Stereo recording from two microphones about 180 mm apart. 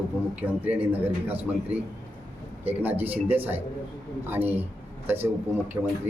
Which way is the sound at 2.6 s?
10° right (ahead or behind).